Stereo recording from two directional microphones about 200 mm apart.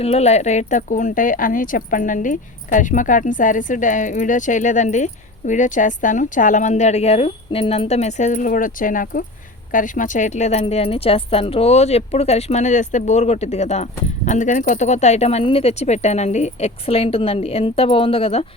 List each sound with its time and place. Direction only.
0.0 s speech: 30° left (ahead or behind)